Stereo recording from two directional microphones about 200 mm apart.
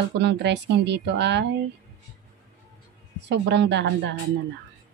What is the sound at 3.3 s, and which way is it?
Speech, 60° right (ahead or behind).